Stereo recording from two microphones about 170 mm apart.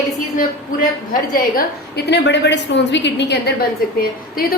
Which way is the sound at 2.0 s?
90° left.